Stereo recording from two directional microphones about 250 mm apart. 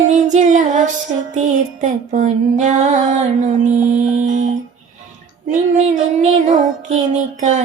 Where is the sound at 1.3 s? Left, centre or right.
Right.